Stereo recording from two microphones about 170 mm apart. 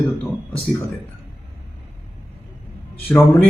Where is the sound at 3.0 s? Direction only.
10° left (ahead or behind).